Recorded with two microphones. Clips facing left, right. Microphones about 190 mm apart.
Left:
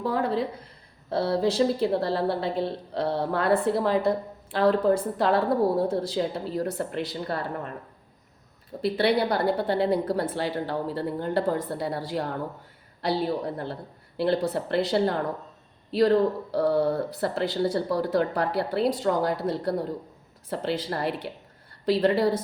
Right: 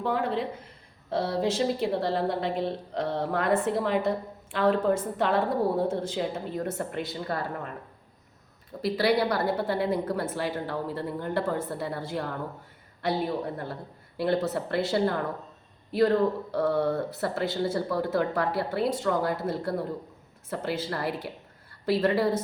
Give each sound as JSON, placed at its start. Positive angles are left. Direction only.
{"t": 0.0, "sound": "a woman's voice", "side_deg": 40}
{"t": 8.8, "sound": "a woman's voice", "side_deg": 25}